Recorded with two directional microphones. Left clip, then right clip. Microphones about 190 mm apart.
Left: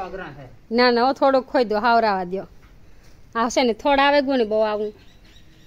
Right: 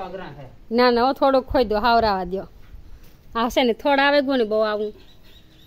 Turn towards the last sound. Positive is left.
turn(degrees=0)  # may be behind; listen again after turning